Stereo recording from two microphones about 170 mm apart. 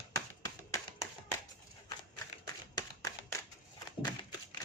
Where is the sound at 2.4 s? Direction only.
20° left (ahead or behind).